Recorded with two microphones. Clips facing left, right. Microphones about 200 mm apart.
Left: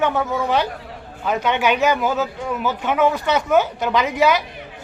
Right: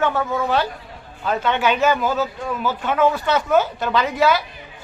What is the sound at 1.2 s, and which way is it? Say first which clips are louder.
Speech: left 1 dB; 15° left (ahead or behind).